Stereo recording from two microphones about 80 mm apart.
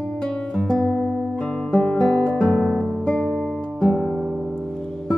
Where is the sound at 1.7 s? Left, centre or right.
Centre.